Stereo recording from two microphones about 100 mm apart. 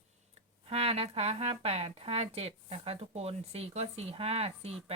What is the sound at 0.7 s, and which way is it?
Speech, 90° right.